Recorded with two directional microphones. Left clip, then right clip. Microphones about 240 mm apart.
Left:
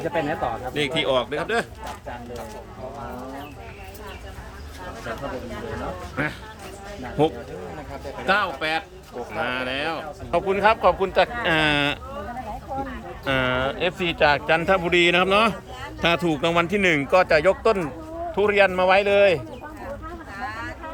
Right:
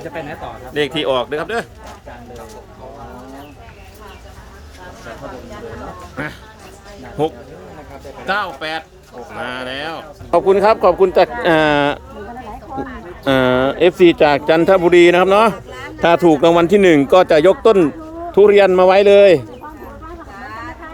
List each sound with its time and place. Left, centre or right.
0.1 s speech: left
0.7 s speech: centre
6.2 s speech: centre
10.3 s speech: right
13.2 s speech: right
20.4 s a sound: centre